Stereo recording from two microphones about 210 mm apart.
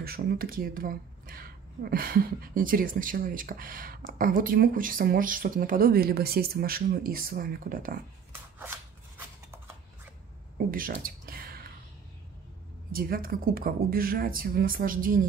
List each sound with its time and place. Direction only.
0.0 s speech: 45° right (ahead or behind)
10.7 s a sound: 45° right (ahead or behind)
12.9 s speech: 45° right (ahead or behind)